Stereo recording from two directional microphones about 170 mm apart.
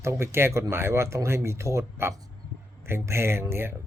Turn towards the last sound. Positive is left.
turn(degrees=-15)  # may be behind; listen again after turning